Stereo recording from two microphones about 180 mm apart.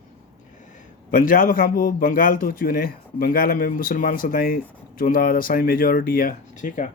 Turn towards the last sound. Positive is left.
turn(degrees=45)  # may be behind; listen again after turning